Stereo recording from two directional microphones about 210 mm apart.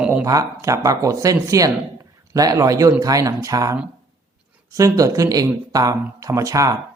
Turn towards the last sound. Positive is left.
turn(degrees=-15)  # may be behind; listen again after turning